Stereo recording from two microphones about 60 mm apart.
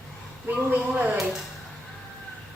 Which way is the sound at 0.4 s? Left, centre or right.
Right.